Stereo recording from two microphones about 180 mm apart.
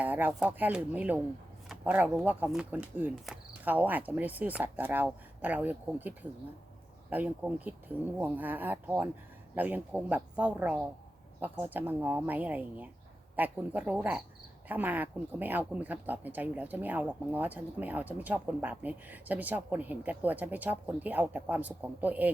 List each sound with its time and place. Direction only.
0.0 s speech: 10° right (ahead or behind)